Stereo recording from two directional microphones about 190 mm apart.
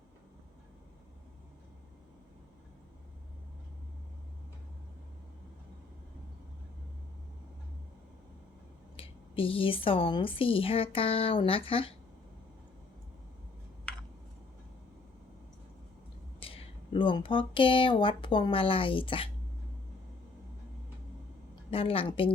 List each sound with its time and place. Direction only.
9.0 s speech: 30° left (ahead or behind)
16.4 s speech: 25° left (ahead or behind)
21.5 s a woman's voice: 30° left (ahead or behind)